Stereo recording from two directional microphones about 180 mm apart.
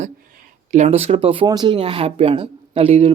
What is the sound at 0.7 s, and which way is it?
Speech, 40° right (ahead or behind).